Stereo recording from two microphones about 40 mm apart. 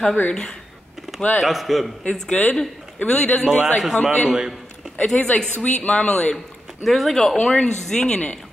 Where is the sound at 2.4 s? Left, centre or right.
Left.